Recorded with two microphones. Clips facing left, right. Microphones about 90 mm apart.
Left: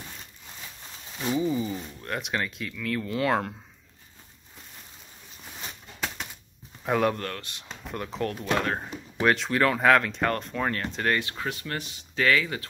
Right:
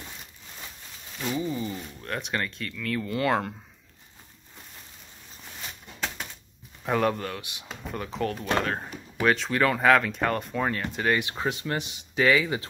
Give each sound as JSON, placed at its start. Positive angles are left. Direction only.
{"t": 1.1, "sound": "speech", "side_deg": 15}
{"t": 5.9, "sound": "typewriter", "side_deg": 0}
{"t": 6.8, "sound": "speech", "side_deg": 0}
{"t": 11.1, "sound": "speech", "side_deg": -20}